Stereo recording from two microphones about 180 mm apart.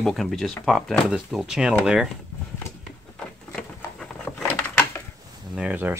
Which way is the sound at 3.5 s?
5° left (ahead or behind).